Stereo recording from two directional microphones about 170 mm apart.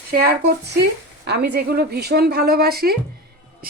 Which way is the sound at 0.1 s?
65° right (ahead or behind).